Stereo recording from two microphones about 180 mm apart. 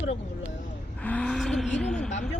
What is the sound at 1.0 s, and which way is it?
Speech, 5° left (ahead or behind).